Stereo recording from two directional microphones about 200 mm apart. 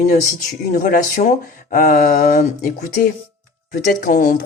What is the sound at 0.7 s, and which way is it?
A man's voice, 45° left (ahead or behind).